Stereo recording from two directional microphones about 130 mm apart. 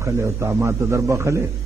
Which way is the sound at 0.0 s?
20° right (ahead or behind).